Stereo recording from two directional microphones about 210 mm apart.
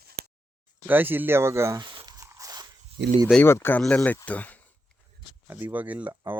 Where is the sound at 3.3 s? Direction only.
10° left (ahead or behind).